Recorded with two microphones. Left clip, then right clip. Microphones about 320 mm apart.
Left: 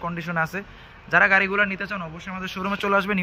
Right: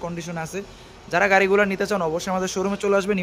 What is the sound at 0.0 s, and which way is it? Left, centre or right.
A man's voice, centre.